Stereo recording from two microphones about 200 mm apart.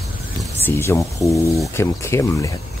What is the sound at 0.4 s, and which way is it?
Speech, 10° left (ahead or behind).